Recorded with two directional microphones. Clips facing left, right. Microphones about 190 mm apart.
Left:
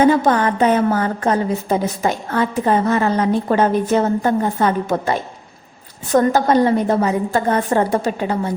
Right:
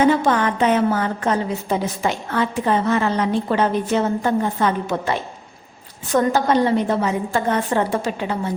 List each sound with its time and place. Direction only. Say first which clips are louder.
0.0 s a woman's voice: left 3 dB; 40° left (ahead or behind)